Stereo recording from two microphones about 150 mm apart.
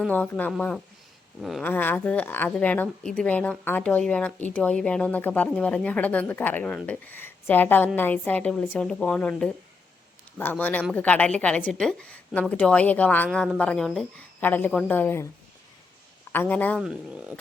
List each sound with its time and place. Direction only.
0.1 s a woman's voice: 10° left (ahead or behind)
1.6 s a woman's voice: 15° left (ahead or behind)
16.3 s a woman's voice: 10° left (ahead or behind)
16.8 s speech: 5° right (ahead or behind)